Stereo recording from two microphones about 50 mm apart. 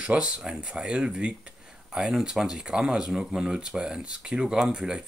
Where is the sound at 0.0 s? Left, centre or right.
Centre.